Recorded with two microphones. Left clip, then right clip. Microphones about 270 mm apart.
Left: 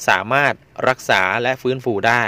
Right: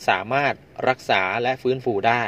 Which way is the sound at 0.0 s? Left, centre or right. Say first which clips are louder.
Left 5 dB; left.